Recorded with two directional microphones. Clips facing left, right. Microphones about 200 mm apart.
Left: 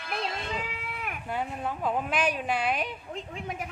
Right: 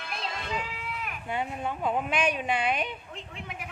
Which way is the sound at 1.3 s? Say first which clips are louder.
Right 1 dB; centre (ahead or behind).